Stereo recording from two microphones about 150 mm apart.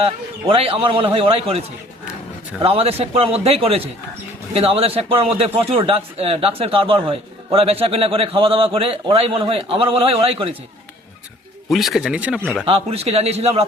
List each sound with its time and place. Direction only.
0.0 s a man's voice: 40° right (ahead or behind)
2.6 s a man's voice: 40° right (ahead or behind)
11.7 s speech: centre (ahead or behind)
12.6 s a man's voice: 40° right (ahead or behind)